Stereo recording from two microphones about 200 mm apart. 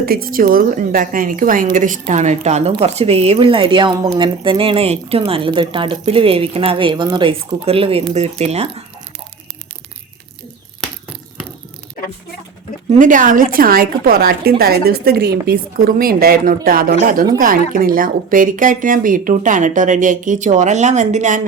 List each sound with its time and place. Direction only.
0.0 s a woman's voice: 50° right (ahead or behind); by 8.7 s 30° right (ahead or behind)
12.9 s a woman's voice: 40° right (ahead or behind)